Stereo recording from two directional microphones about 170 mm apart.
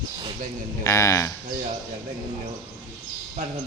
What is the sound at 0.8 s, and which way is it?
Speech, 15° left (ahead or behind).